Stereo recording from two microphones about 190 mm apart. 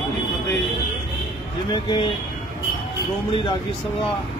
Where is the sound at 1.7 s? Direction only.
25° left (ahead or behind).